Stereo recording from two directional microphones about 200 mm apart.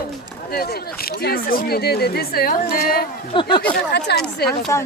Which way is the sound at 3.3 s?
25° left (ahead or behind).